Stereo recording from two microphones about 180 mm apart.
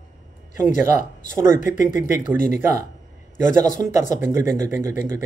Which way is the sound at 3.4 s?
45° left (ahead or behind).